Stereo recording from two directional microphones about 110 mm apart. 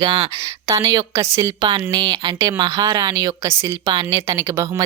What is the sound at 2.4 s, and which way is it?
Speech, 30° right (ahead or behind).